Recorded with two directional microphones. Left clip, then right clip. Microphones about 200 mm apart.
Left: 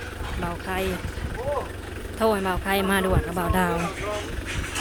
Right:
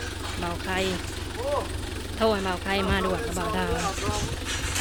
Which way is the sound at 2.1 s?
15° left (ahead or behind).